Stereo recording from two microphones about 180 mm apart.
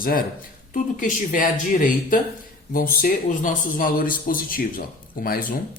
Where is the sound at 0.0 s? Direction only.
50° left (ahead or behind).